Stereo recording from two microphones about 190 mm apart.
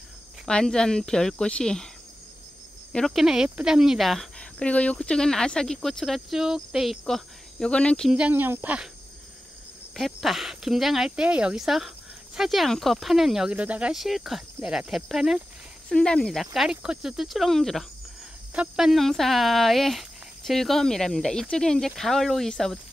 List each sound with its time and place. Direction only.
0.5 s speech: 5° left (ahead or behind)
2.9 s speech: centre (ahead or behind)
9.9 s speech: centre (ahead or behind)